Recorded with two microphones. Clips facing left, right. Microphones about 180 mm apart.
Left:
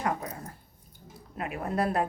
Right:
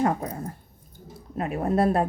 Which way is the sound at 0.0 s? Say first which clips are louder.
Right 7 dB; 30° right (ahead or behind).